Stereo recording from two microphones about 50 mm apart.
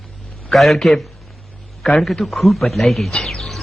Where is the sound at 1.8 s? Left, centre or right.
Centre.